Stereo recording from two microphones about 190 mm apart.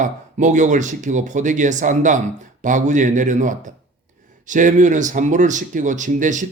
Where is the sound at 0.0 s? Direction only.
40° right (ahead or behind).